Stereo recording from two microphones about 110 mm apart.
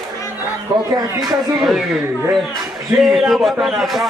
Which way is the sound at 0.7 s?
35° right (ahead or behind).